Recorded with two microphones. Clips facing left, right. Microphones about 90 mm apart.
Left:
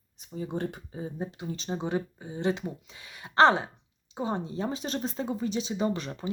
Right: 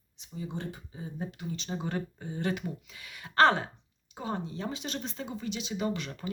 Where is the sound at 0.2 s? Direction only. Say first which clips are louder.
Left 6 dB; 50° left (ahead or behind).